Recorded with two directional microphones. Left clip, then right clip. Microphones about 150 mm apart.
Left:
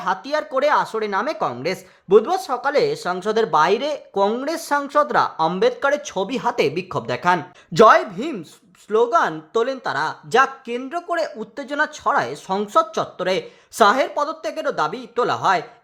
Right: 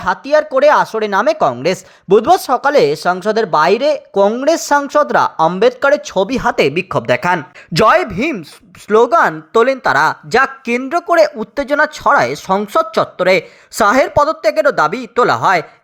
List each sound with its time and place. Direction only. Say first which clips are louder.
0.0 s speech: right 9 dB; 25° right (ahead or behind)